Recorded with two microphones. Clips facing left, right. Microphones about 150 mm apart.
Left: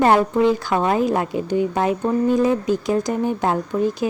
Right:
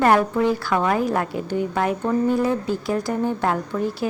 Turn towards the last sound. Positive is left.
turn(degrees=20)  # may be behind; listen again after turning